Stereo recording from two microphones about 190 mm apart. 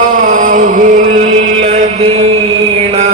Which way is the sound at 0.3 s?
45° right (ahead or behind).